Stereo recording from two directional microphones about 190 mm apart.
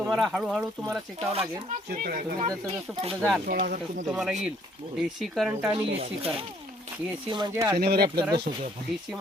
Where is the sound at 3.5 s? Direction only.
45° right (ahead or behind).